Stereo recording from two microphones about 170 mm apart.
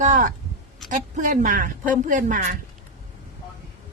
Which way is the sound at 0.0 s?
50° right (ahead or behind).